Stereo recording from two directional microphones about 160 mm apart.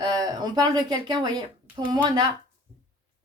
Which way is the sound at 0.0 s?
25° right (ahead or behind).